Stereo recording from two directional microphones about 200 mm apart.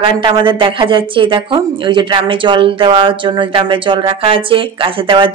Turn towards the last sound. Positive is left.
turn(degrees=-25)  # may be behind; listen again after turning